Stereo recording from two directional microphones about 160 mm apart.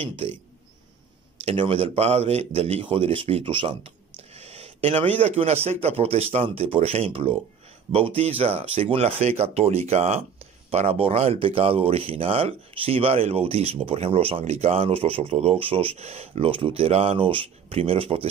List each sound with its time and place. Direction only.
1.4 s speech: 40° right (ahead or behind)